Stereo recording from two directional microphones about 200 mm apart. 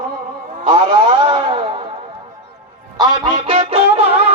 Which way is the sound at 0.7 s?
25° right (ahead or behind).